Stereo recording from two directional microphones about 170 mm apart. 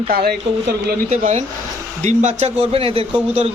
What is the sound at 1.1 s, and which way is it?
A man's voice, 45° right (ahead or behind).